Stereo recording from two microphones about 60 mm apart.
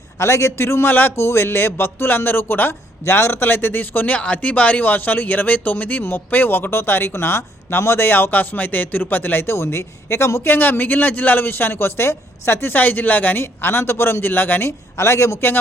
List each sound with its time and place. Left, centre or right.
0.2 s speech: left
10.5 s speech: left
12.7 s speech: left
13.4 s speech: left
14.9 s speech: left